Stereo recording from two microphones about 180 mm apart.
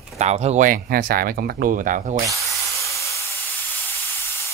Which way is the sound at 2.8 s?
15° left (ahead or behind).